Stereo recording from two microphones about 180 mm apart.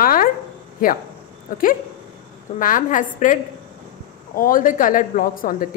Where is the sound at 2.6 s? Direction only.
50° left (ahead or behind).